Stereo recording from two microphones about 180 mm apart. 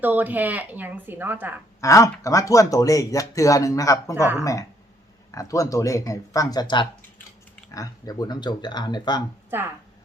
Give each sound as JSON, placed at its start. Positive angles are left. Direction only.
{"t": 0.0, "sound": "a woman's voice", "side_deg": -10}
{"t": 1.8, "sound": "speech", "side_deg": 15}
{"t": 4.1, "sound": "a woman's voice", "side_deg": -10}
{"t": 5.3, "sound": "speech", "side_deg": 20}